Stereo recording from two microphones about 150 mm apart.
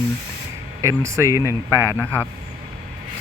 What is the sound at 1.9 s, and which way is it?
Speech, 10° left (ahead or behind).